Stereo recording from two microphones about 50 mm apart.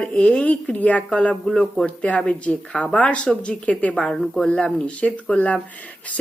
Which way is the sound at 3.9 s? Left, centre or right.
Centre.